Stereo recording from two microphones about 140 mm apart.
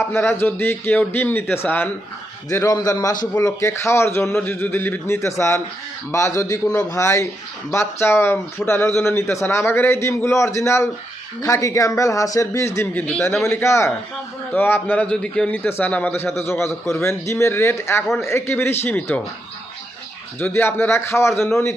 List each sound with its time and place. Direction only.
0.0 s a man's voice: 15° left (ahead or behind)
20.4 s a man's voice: 15° left (ahead or behind)